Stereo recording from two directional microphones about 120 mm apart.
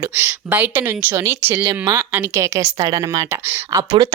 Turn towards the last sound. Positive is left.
turn(degrees=-35)  # may be behind; listen again after turning